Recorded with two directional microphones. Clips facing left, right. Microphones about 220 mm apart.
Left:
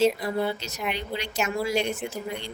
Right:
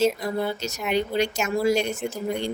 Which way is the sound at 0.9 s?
45° right (ahead or behind).